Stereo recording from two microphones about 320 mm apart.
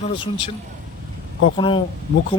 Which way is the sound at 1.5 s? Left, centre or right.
Centre.